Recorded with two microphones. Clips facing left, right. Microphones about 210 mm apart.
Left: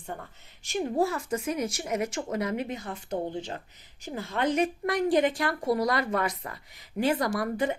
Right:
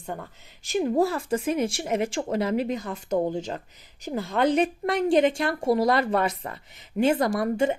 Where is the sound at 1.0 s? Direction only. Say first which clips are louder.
Right 4 dB; 30° right (ahead or behind).